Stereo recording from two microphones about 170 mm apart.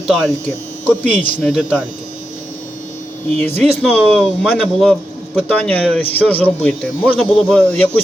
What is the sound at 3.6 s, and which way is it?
Speech, 5° left (ahead or behind).